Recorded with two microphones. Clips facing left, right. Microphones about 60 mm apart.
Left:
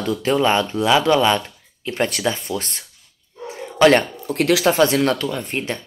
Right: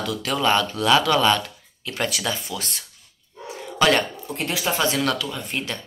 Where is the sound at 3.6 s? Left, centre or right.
Left.